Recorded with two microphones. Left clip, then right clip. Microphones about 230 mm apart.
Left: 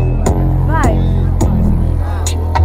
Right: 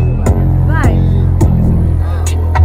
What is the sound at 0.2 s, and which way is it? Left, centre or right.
Music, left.